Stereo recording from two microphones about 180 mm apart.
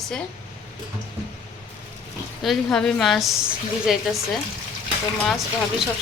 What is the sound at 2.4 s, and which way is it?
A woman's voice, centre (ahead or behind).